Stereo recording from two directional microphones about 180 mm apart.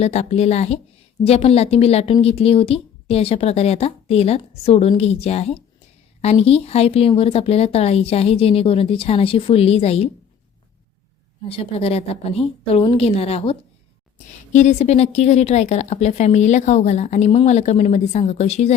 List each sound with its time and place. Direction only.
0.0 s a woman's voice: 35° left (ahead or behind)
11.4 s a woman's voice: 30° left (ahead or behind)